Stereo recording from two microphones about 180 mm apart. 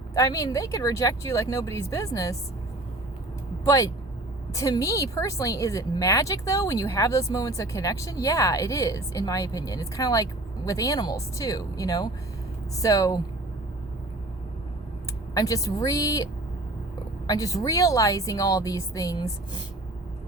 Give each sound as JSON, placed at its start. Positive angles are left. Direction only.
{"t": 0.1, "sound": "a woman's voice", "side_deg": 20}
{"t": 3.6, "sound": "a woman's voice", "side_deg": 20}
{"t": 15.4, "sound": "a woman's voice", "side_deg": 20}